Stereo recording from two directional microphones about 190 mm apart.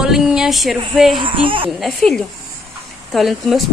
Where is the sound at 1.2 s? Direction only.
25° right (ahead or behind).